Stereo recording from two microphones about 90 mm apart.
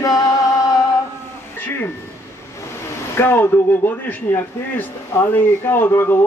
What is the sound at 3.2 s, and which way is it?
A man's voice, 25° left (ahead or behind).